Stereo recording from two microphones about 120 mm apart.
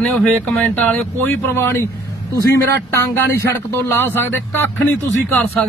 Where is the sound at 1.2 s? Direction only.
15° left (ahead or behind).